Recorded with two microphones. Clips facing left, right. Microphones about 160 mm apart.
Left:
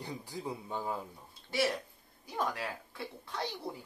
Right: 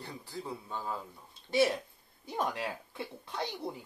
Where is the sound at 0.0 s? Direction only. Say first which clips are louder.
Left 2 dB; 15° left (ahead or behind).